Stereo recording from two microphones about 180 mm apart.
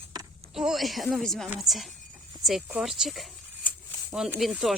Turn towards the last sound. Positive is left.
turn(degrees=0)  # may be behind; listen again after turning